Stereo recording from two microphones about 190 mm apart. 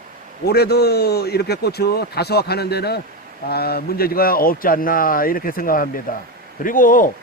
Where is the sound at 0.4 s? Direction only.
55° left (ahead or behind).